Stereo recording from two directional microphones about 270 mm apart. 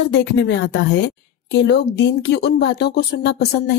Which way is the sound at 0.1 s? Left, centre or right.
Left.